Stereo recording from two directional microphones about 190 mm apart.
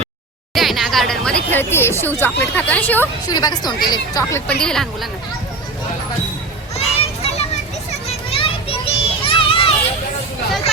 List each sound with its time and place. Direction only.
0.5 s speech: centre (ahead or behind)
3.2 s a woman's voice: 20° left (ahead or behind)
4.6 s speech: centre (ahead or behind)
6.7 s children playing: 35° left (ahead or behind)